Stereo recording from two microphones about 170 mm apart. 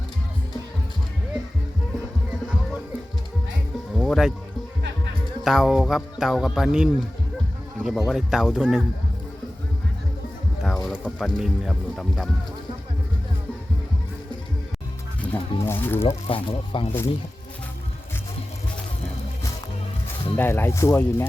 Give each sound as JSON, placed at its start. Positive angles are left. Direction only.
{"t": 3.9, "sound": "music", "side_deg": 0}
{"t": 5.4, "sound": "speech", "side_deg": 0}
{"t": 11.0, "sound": "speech", "side_deg": 0}
{"t": 15.3, "sound": "speech", "side_deg": 15}
{"t": 16.0, "sound": "speech", "side_deg": 35}
{"t": 20.3, "sound": "speech", "side_deg": 10}